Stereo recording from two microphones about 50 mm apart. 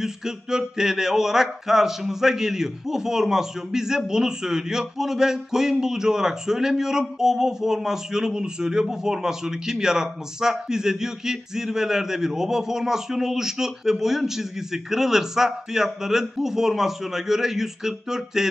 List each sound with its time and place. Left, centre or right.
0.0 s speech: centre